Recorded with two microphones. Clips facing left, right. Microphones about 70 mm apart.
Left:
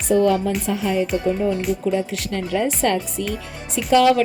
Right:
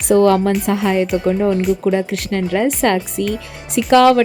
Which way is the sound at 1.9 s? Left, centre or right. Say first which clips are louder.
Right 5 dB; right.